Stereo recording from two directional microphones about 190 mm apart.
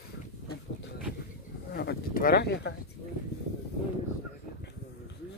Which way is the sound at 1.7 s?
55° left (ahead or behind).